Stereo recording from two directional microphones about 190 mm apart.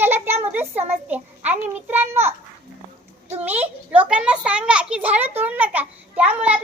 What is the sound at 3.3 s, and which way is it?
A child's voice, 10° right (ahead or behind).